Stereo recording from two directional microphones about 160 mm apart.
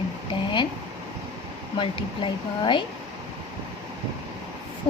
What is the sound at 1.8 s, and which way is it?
A woman's voice, 30° left (ahead or behind).